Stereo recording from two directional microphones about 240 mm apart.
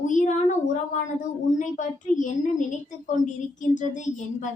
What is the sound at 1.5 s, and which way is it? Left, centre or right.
A woman's voice, left.